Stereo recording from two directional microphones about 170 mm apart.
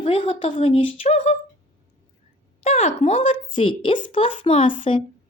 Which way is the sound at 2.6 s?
35° left (ahead or behind).